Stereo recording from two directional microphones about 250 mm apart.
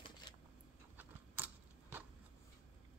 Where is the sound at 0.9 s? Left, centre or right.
Centre.